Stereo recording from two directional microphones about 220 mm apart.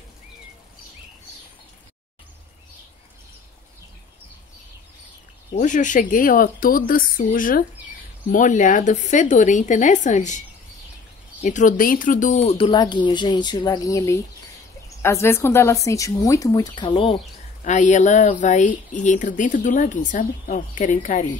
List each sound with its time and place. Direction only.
5.6 s speech: 35° left (ahead or behind)
11.4 s speech: 35° left (ahead or behind)